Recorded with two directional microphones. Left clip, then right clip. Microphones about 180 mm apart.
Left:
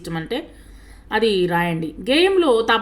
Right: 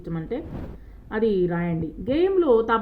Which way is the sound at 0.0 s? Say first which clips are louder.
Left 5 dB; 15° left (ahead or behind).